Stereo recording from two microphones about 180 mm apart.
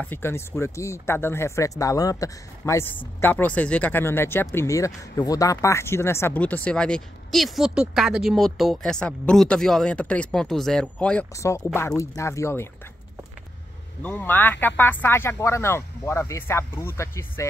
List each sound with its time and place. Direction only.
0.0 s speech: 10° left (ahead or behind)
11.3 s speech: 15° left (ahead or behind)
14.0 s speech: 10° left (ahead or behind)